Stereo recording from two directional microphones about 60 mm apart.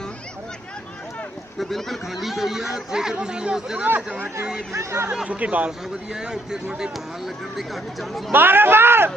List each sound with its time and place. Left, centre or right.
1.5 s speech: centre
3.8 s speech: right
4.7 s speech: right
5.3 s speech: right; by 8.2 s centre
8.3 s speech: right